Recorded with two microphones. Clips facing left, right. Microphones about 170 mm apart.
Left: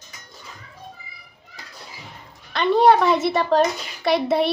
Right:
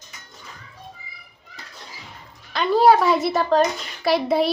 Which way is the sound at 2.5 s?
Centre (ahead or behind).